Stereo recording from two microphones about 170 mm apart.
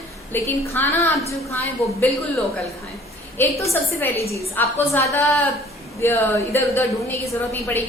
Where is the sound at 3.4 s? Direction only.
15° left (ahead or behind).